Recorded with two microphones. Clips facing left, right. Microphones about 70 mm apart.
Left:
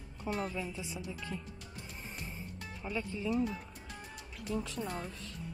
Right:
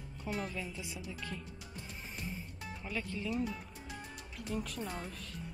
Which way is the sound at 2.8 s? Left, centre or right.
Centre.